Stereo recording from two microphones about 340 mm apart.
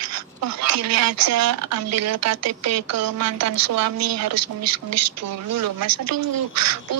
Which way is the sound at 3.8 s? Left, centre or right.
Right.